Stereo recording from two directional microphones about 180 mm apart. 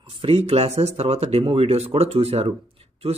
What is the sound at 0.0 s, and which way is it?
Speech, 30° right (ahead or behind).